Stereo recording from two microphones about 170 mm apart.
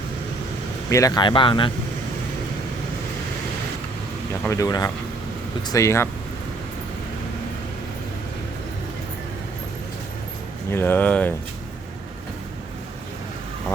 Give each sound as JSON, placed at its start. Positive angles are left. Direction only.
{"t": 0.9, "sound": "speech", "side_deg": 20}
{"t": 4.4, "sound": "speech", "side_deg": 20}
{"t": 10.7, "sound": "speech", "side_deg": 15}